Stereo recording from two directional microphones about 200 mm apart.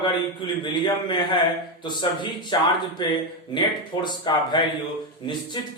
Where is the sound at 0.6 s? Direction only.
25° left (ahead or behind).